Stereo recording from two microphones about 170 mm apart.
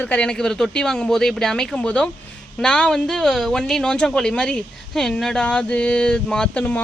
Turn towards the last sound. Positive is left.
turn(degrees=10)  # may be behind; listen again after turning